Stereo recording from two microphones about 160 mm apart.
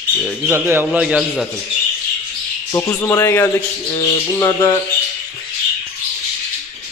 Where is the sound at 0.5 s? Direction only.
15° right (ahead or behind).